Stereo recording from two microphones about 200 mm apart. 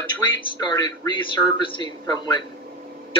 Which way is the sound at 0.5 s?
20° left (ahead or behind).